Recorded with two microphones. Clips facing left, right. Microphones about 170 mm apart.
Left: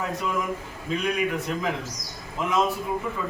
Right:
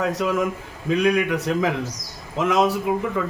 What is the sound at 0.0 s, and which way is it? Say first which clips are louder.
A man's voice: right 6 dB; 85° right.